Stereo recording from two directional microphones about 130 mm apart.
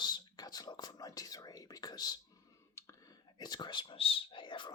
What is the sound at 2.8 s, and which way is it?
Whispering, 25° left (ahead or behind).